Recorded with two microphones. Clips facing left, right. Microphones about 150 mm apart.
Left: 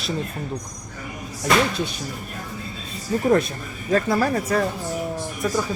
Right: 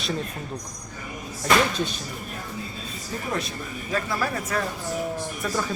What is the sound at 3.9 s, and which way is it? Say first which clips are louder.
Speech: left 7 dB; 45° left (ahead or behind).